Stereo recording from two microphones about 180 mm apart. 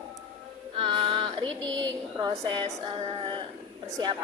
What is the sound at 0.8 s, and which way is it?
A woman's voice, 30° right (ahead or behind).